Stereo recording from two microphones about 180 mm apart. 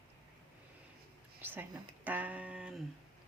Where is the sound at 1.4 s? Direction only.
10° right (ahead or behind).